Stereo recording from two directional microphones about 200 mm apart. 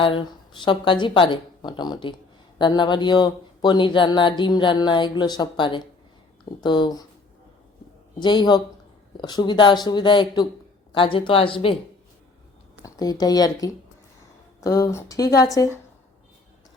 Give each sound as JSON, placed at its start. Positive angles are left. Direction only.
{"t": 0.0, "sound": "speech", "side_deg": 25}
{"t": 8.2, "sound": "speech", "side_deg": 20}
{"t": 12.8, "sound": "speech", "side_deg": 20}